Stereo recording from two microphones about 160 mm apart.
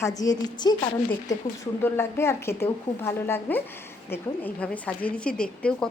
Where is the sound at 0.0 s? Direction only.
20° left (ahead or behind).